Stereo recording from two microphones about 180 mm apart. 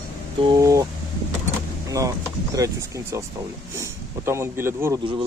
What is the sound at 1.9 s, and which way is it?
Speech, 20° right (ahead or behind).